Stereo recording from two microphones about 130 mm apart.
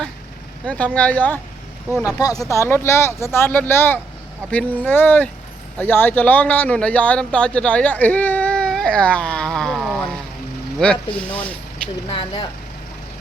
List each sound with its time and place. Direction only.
0.7 s speech: 10° left (ahead or behind)
2.0 s speech: 30° left (ahead or behind); by 11.5 s 10° left (ahead or behind)
12.0 s speech: 40° left (ahead or behind)